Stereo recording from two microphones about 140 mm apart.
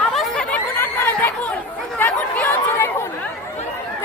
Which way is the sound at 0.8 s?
15° left (ahead or behind).